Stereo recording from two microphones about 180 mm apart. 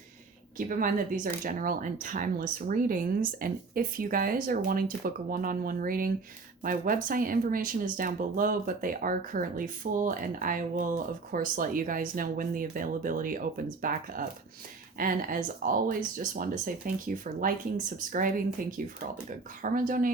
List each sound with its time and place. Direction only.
0.5 s speech: 50° right (ahead or behind)